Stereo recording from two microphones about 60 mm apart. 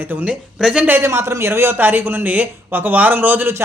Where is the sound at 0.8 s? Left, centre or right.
Right.